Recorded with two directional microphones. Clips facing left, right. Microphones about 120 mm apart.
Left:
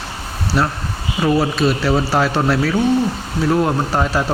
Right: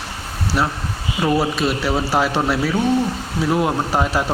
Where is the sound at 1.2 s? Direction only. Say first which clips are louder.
Left 2 dB; 10° right (ahead or behind).